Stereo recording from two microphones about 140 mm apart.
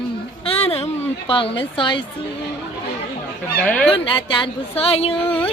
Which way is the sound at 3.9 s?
40° left (ahead or behind).